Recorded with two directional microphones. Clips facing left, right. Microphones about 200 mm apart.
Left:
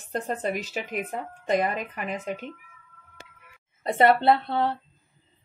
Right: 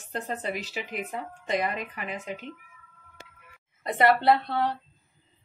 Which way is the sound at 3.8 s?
30° left (ahead or behind).